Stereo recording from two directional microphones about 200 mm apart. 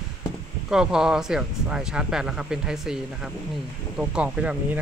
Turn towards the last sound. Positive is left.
turn(degrees=-5)  # may be behind; listen again after turning